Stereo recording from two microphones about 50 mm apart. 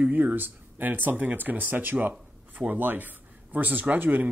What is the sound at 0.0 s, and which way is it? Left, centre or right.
Speech, right.